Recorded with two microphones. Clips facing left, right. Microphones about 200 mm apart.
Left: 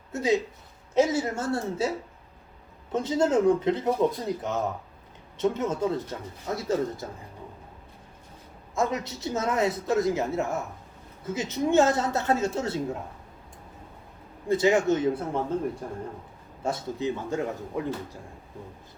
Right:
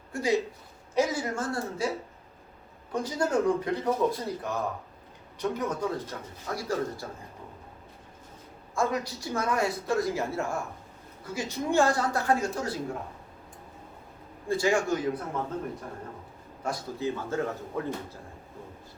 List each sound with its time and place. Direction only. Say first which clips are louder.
0.1 s a man's voice: left 2 dB; 20° left (ahead or behind)
2.9 s a man's voice: left 4 dB; 25° left (ahead or behind)
8.7 s a man's voice: left 1 dB; 20° left (ahead or behind)
14.4 s a man's voice: left 4 dB; 20° left (ahead or behind)
16.6 s a man's voice: left 3 dB; 20° left (ahead or behind)